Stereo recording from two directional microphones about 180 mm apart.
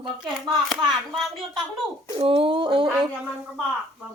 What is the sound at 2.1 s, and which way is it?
Speech, 30° right (ahead or behind).